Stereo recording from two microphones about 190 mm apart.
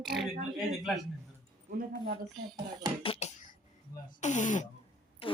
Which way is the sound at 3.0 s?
30° left (ahead or behind).